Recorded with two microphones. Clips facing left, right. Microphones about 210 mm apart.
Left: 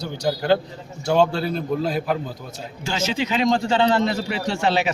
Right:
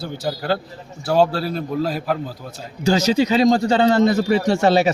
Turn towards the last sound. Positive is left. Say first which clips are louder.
# right 6 dB
turn(degrees=-40)  # may be behind; listen again after turning